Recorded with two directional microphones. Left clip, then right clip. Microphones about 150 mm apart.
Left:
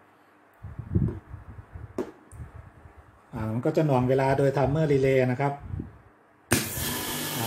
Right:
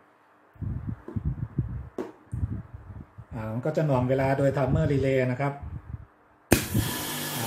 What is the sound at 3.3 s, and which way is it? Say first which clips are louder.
Speech: left 2 dB; 30° left (ahead or behind).